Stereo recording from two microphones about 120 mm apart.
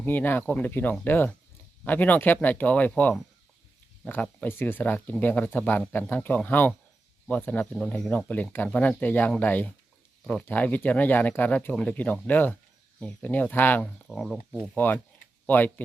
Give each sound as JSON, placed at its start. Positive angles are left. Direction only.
{"t": 0.0, "sound": "speech", "side_deg": 15}
{"t": 14.0, "sound": "speech", "side_deg": 0}
{"t": 14.8, "sound": "speech", "side_deg": 15}